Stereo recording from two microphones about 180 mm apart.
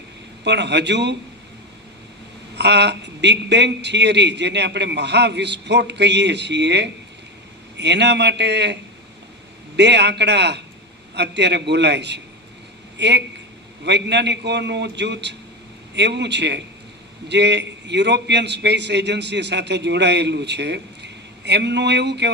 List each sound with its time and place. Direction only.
0.4 s a man's voice: 75° right (ahead or behind)
2.6 s a man's voice: 70° right (ahead or behind)